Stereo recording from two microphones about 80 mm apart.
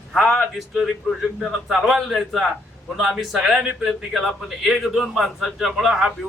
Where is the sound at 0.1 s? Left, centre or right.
Centre.